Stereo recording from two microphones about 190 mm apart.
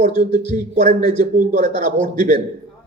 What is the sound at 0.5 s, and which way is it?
A man's voice, 40° right (ahead or behind).